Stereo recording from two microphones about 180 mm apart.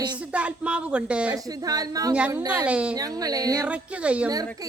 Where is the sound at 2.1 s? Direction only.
5° right (ahead or behind).